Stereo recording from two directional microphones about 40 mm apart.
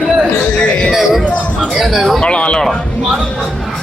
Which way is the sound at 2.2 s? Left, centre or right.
Left.